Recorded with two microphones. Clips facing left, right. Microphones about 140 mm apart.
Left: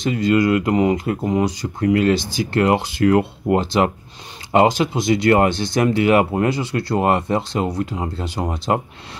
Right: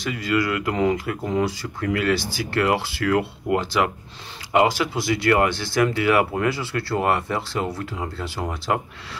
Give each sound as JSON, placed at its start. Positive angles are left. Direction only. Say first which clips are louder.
{"t": 0.0, "sound": "speech", "louder": "left 6 dB", "side_deg": 25}